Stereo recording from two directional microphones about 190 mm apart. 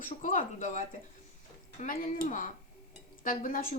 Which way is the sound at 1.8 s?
50° left (ahead or behind).